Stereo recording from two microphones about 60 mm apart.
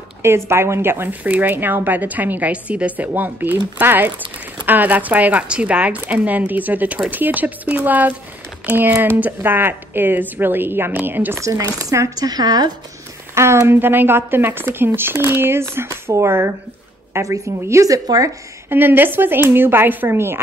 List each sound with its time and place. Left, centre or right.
0.2 s speech: right
1.2 s speech: right
11.3 s a woman's voice: right
11.8 s a woman's voice: right
12.2 s a woman's voice: right
13.3 s a sound: right
13.7 s a woman's voice: right
18.7 s speech: right